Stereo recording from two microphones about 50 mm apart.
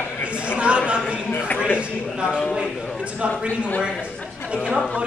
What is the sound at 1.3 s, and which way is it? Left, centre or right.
Speech, left.